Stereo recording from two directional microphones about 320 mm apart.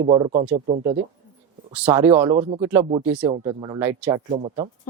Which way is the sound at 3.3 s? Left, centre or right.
Centre.